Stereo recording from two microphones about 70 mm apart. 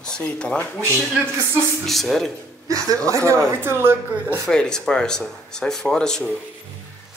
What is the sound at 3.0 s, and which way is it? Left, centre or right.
Speech, right.